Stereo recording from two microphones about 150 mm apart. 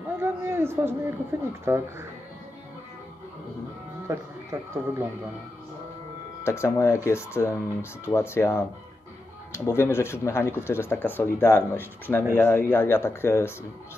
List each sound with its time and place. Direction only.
0.2 s speech: 15° right (ahead or behind)
4.1 s speech: 20° right (ahead or behind)
6.4 s speech: 20° left (ahead or behind)